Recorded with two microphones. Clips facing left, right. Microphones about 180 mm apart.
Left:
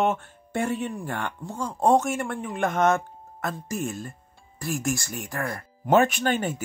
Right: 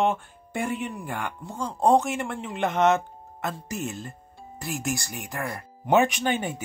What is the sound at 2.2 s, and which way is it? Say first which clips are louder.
Speech: left 1 dB; 25° right (ahead or behind).